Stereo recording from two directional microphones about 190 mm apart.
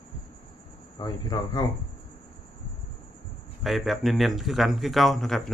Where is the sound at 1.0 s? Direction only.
20° left (ahead or behind).